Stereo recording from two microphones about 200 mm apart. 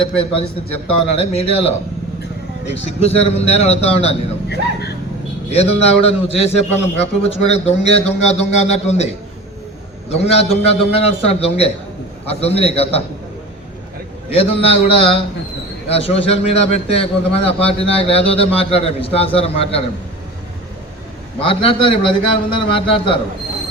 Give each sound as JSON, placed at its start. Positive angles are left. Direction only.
{"t": 1.0, "sound": "speech", "side_deg": 30}
{"t": 2.8, "sound": "speech", "side_deg": 30}
{"t": 4.4, "sound": "speech", "side_deg": 55}
{"t": 5.5, "sound": "speech", "side_deg": 30}
{"t": 10.1, "sound": "speech", "side_deg": 30}
{"t": 14.3, "sound": "a man's voice", "side_deg": 30}
{"t": 21.4, "sound": "a man's voice", "side_deg": 25}